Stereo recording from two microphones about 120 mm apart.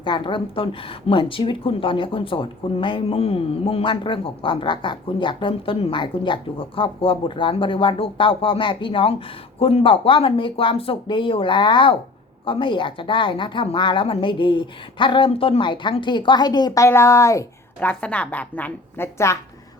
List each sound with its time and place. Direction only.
0.0 s speech: 40° left (ahead or behind); by 17.4 s 25° left (ahead or behind)
17.7 s a woman's voice: 10° left (ahead or behind)